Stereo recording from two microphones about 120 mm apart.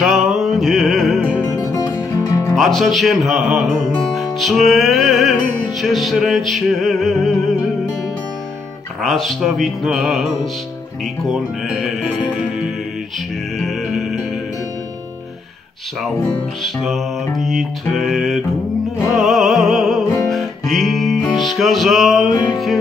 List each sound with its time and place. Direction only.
0.0 s music: centre (ahead or behind)
1.6 s music: 30° left (ahead or behind)
2.5 s music: centre (ahead or behind)
9.0 s music: centre (ahead or behind)
13.6 s music: centre (ahead or behind)
16.6 s music: centre (ahead or behind)